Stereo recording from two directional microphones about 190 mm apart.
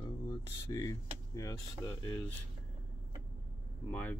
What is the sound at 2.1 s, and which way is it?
Speech, 10° left (ahead or behind).